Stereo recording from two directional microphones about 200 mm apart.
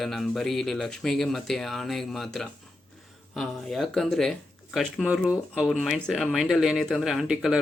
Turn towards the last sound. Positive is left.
turn(degrees=0)  # may be behind; listen again after turning